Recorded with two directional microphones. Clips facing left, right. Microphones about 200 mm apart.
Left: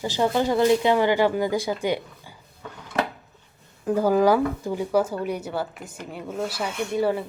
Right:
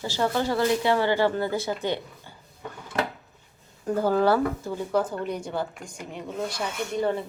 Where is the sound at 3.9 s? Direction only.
10° left (ahead or behind).